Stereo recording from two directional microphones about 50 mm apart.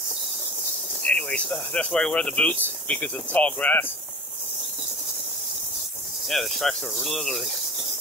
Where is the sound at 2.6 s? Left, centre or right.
Left.